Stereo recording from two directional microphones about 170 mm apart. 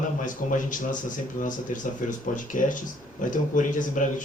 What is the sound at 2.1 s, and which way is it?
A man's voice, 50° left (ahead or behind).